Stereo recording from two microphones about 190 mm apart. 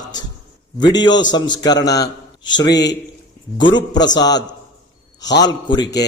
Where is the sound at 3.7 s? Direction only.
20° left (ahead or behind).